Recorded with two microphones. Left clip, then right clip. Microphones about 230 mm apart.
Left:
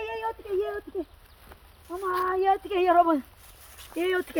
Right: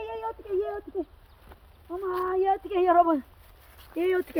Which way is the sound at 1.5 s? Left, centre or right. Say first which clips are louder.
Even; centre.